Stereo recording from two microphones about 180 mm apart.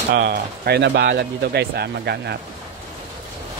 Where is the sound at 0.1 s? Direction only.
65° right (ahead or behind).